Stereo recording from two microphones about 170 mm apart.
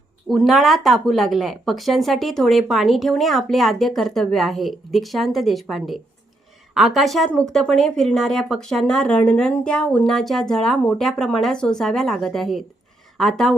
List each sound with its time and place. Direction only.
0.3 s speech: centre (ahead or behind)